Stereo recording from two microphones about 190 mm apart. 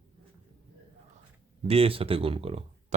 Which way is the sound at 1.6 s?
30° right (ahead or behind).